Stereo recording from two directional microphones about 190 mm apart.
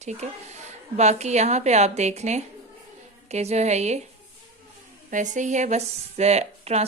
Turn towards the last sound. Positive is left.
turn(degrees=-35)  # may be behind; listen again after turning